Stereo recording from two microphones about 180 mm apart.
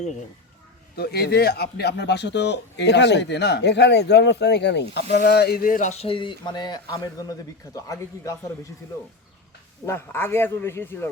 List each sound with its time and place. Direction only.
0.9 s a man's voice: 60° left (ahead or behind); by 8.4 s 20° left (ahead or behind)
9.8 s a man's voice: 10° left (ahead or behind)